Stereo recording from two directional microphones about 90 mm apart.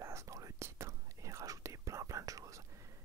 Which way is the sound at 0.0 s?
35° right (ahead or behind).